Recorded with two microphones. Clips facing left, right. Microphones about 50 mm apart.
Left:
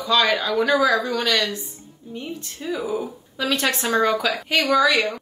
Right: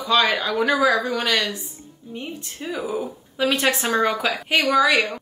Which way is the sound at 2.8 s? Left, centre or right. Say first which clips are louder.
Even; centre.